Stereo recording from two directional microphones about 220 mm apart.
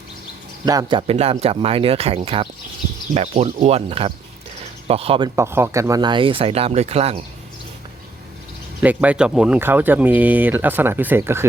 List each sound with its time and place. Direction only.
0.6 s speech: 20° right (ahead or behind)
5.4 s speech: 10° right (ahead or behind); by 7.3 s 25° right (ahead or behind)
8.8 s speech: 5° right (ahead or behind)